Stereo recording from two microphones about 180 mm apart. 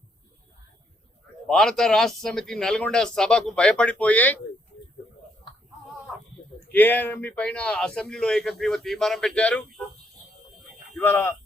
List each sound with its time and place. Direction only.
1.5 s speech: centre (ahead or behind)
6.7 s speech: 10° left (ahead or behind)
10.9 s speech: 10° left (ahead or behind)